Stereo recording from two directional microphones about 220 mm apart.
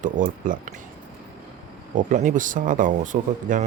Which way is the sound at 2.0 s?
35° right (ahead or behind).